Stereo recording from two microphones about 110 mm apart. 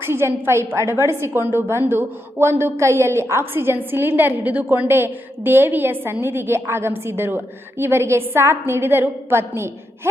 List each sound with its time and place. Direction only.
0.0 s a woman's voice: 25° right (ahead or behind)